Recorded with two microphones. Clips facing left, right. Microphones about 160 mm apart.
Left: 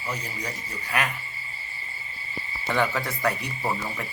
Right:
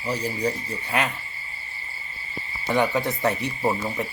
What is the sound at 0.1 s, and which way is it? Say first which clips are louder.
Speech: right 8 dB; 30° right (ahead or behind).